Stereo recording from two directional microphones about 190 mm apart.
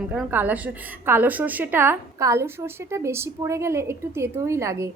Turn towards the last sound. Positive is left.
turn(degrees=-15)  # may be behind; listen again after turning